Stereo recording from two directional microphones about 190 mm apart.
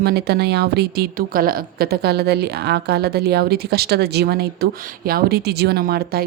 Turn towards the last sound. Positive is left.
turn(degrees=-50)  # may be behind; listen again after turning